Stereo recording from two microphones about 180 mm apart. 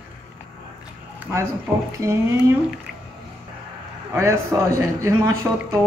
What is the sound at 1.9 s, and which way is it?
Speech, 15° right (ahead or behind).